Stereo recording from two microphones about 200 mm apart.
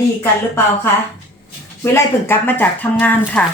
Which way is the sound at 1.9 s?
10° left (ahead or behind).